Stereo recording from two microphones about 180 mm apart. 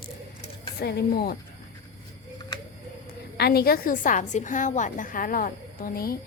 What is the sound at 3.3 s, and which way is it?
A woman's voice, 60° left (ahead or behind).